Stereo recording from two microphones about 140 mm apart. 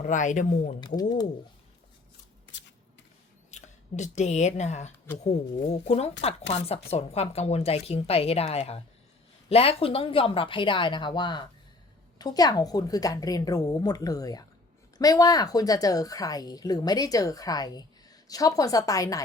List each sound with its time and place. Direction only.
0.0 s speech: 65° left (ahead or behind)
0.8 s speech: 30° left (ahead or behind)
3.5 s a woman's voice: 60° left (ahead or behind); by 19.2 s 25° left (ahead or behind)